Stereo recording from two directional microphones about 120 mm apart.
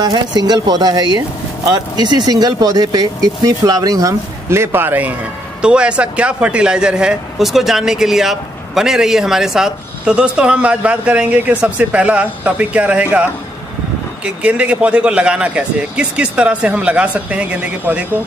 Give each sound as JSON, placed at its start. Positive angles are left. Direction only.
{"t": 0.0, "sound": "speech", "side_deg": -35}